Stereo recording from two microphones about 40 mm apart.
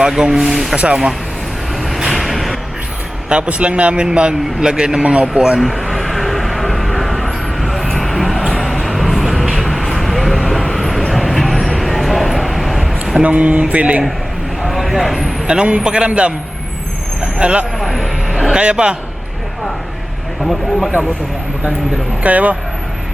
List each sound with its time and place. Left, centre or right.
0.0 s speech: centre
1.8 s vehicle: centre
3.2 s a man's voice: right
5.5 s vehicle: centre
13.2 s speech: right
14.7 s a sound: centre
15.4 s a man's voice: right
17.3 s a man's voice: right
17.7 s music: centre
18.5 s a man's voice: right
20.4 s speech: centre
22.2 s speech: right